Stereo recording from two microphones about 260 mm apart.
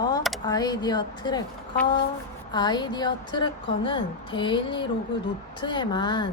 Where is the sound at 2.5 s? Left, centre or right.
Centre.